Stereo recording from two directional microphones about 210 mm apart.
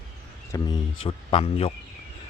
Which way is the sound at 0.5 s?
15° left (ahead or behind).